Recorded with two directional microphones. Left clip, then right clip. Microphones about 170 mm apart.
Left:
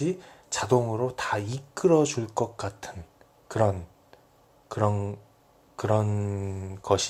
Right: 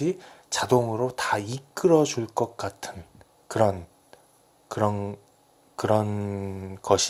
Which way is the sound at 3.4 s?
30° right (ahead or behind).